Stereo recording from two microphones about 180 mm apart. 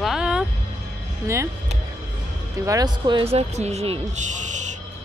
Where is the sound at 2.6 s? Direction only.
20° right (ahead or behind); by 4.8 s 40° right (ahead or behind).